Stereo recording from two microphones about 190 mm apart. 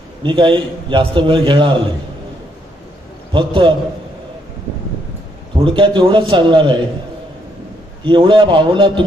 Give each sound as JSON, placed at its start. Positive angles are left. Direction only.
{"t": 0.2, "sound": "a man's voice", "side_deg": -25}
{"t": 3.3, "sound": "a man's voice", "side_deg": -25}
{"t": 5.5, "sound": "a man's voice", "side_deg": -25}
{"t": 8.0, "sound": "a man's voice", "side_deg": -25}